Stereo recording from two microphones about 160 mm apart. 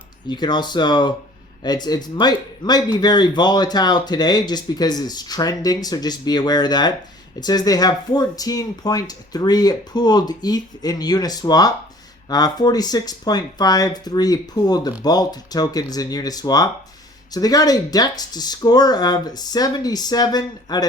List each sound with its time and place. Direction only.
0.3 s speech: 25° left (ahead or behind)